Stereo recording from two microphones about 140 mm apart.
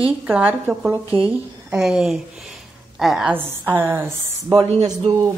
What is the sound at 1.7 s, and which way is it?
A woman's voice, 5° right (ahead or behind).